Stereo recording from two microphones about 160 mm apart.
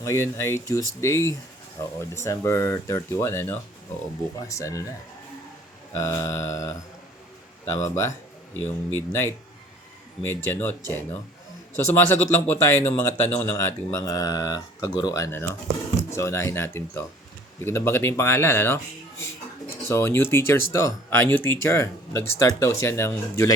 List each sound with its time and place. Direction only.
0.0 s speech: 15° left (ahead or behind)
5.9 s speech: 20° left (ahead or behind)